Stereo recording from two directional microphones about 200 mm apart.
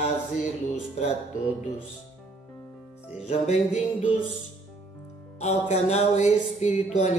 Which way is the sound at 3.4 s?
40° left (ahead or behind).